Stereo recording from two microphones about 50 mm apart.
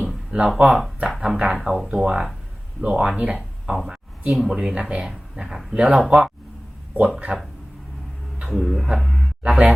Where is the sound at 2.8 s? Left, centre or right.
Right.